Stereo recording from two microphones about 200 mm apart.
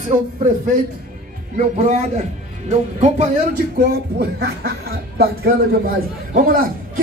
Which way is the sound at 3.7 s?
50° right (ahead or behind).